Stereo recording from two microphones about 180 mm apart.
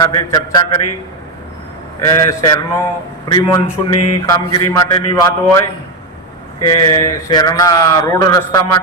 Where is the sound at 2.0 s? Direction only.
15° left (ahead or behind).